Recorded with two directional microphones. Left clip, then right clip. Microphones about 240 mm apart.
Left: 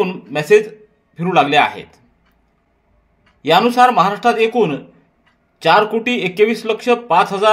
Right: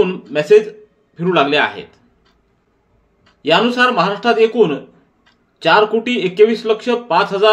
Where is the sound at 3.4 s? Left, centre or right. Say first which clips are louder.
Left 2 dB; left.